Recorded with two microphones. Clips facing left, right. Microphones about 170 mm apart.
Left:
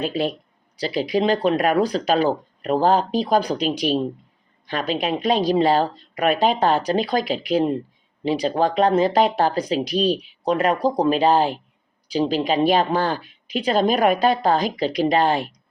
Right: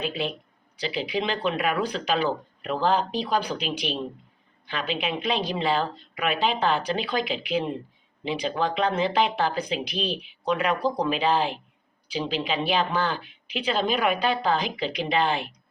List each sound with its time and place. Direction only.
0.0 s a woman's voice: 40° left (ahead or behind)